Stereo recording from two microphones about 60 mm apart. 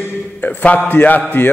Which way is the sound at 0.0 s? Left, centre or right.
Left.